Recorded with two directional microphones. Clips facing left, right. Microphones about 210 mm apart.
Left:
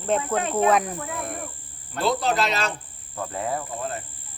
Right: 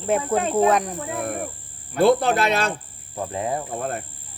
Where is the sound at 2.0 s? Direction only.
55° right (ahead or behind).